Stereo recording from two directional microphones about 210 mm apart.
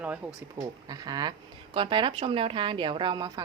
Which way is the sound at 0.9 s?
20° right (ahead or behind).